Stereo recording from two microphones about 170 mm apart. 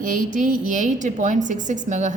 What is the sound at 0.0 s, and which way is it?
A woman's voice, 50° right (ahead or behind).